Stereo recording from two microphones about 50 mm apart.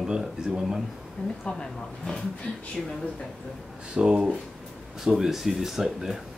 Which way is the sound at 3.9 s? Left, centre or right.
Centre.